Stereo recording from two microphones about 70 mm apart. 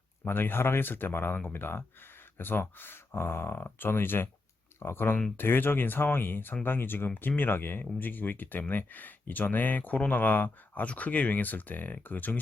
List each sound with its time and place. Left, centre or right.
0.3 s speech: left